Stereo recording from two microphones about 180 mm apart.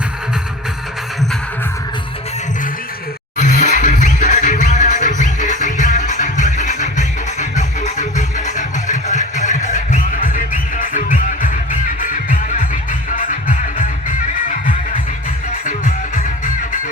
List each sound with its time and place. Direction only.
3.3 s music: 45° left (ahead or behind)